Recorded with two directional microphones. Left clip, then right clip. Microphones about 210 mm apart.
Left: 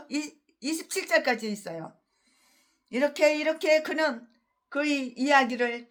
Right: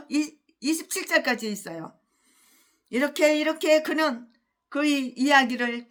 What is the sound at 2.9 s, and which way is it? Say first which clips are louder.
A woman's voice: right 2 dB; 15° right (ahead or behind).